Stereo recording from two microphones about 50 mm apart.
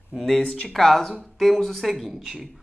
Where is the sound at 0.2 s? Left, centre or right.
Centre.